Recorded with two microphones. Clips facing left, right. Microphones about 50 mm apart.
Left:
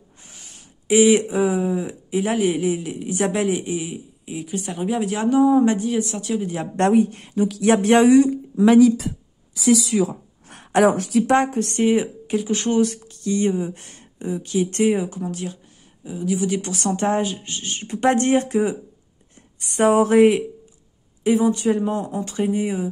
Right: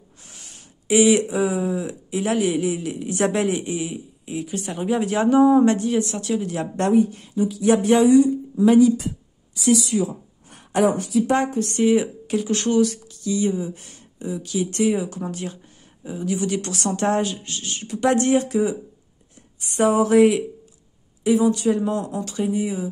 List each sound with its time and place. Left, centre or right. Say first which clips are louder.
0.3 s a sound: right 1 dB; centre
0.8 s speech: left 1 dB; centre
6.8 s speech: left 2 dB; left
9.9 s speech: left 2 dB; left
10.5 s a sound: left 3 dB; left
10.9 s speech: left 2 dB; left
11.3 s speech: left 3 dB; left
11.8 s a woman's voice: right 1 dB; centre
12.4 s speech: even; centre
12.8 s speech: even; left
15.3 s a woman's voice: left 1 dB; centre
17.5 s a woman's voice: left 1 dB; left